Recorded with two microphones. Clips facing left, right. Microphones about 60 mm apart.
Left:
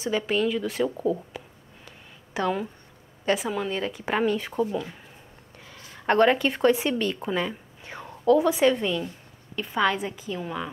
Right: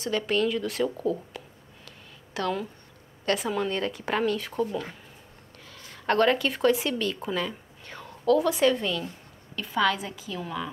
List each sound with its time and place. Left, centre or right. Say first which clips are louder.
0.0 s speech: left 1 dB; centre
5.9 s a woman's voice: left 3 dB; centre
6.3 s a woman's voice: left 2 dB; centre